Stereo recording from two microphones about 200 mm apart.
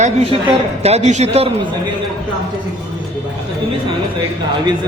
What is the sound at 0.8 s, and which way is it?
Speech, 30° right (ahead or behind).